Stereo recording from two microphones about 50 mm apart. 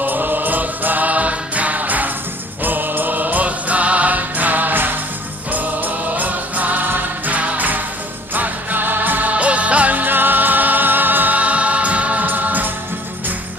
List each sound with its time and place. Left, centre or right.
0.0 s music: right
9.3 s music: right